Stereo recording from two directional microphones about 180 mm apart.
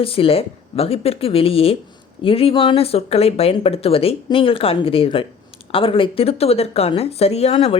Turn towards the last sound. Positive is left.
turn(degrees=35)  # may be behind; listen again after turning